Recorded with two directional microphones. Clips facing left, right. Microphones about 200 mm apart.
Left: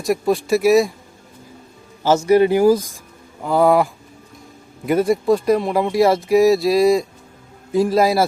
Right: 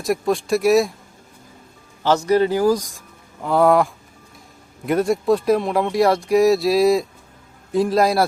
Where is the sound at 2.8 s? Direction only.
Centre (ahead or behind).